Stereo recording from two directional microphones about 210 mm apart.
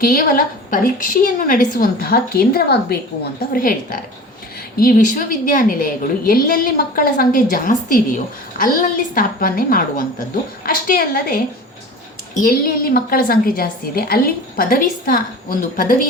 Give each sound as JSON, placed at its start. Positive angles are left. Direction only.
{"t": 0.0, "sound": "a woman's voice", "side_deg": 40}